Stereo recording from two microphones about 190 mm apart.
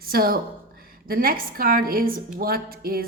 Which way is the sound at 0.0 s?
50° right (ahead or behind).